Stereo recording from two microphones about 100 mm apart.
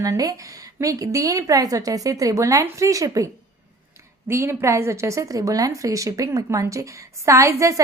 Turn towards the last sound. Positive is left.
turn(degrees=-30)  # may be behind; listen again after turning